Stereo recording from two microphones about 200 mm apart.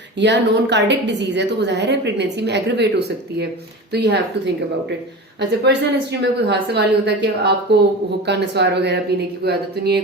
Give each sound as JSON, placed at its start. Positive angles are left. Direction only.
{"t": 0.2, "sound": "a woman's voice", "side_deg": -60}
{"t": 3.9, "sound": "a woman's voice", "side_deg": -55}
{"t": 5.4, "sound": "a woman's voice", "side_deg": -55}